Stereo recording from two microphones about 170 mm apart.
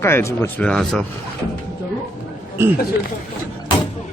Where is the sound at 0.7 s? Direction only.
5° left (ahead or behind).